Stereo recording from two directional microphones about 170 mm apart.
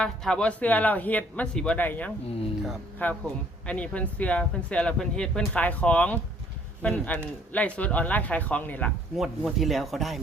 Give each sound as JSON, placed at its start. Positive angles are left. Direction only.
{"t": 0.0, "sound": "speech", "side_deg": 5}